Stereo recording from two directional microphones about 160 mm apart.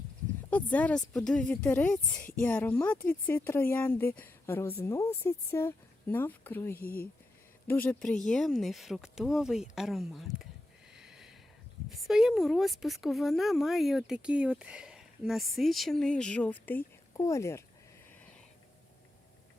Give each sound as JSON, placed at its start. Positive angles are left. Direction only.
{"t": 0.5, "sound": "speech", "side_deg": 10}
{"t": 6.8, "sound": "speech", "side_deg": 70}
{"t": 7.7, "sound": "speech", "side_deg": 10}
{"t": 10.9, "sound": "a sound", "side_deg": -5}
{"t": 11.9, "sound": "speech", "side_deg": -5}